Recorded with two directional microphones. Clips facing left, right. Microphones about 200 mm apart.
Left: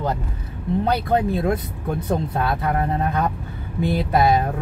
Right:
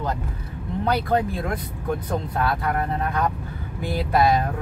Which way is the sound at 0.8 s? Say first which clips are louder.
Even; 25° left (ahead or behind).